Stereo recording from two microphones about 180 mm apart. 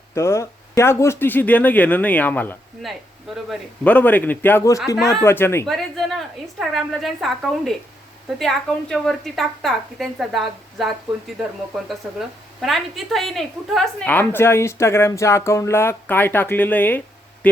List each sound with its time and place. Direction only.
0.1 s a woman's voice: 15° left (ahead or behind); by 3.9 s centre (ahead or behind)
3.9 s a woman's voice: 10° left (ahead or behind)
5.6 s a woman's voice: centre (ahead or behind)
12.0 s a woman's voice: 5° right (ahead or behind)